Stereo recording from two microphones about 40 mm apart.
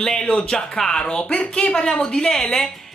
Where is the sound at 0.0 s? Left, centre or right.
Centre.